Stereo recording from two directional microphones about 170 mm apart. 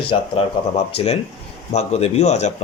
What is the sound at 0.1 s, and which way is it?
Speech, 35° left (ahead or behind).